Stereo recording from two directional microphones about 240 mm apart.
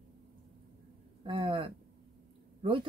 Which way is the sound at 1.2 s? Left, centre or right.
Right.